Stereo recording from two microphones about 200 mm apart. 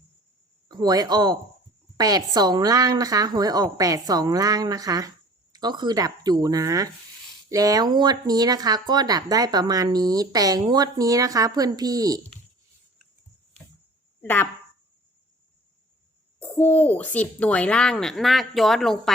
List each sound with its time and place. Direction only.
0.7 s a woman's voice: 20° right (ahead or behind)
14.2 s speech: 10° left (ahead or behind)
16.4 s speech: 10° left (ahead or behind)